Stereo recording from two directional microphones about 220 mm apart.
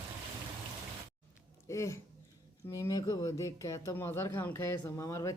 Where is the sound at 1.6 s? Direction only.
15° left (ahead or behind).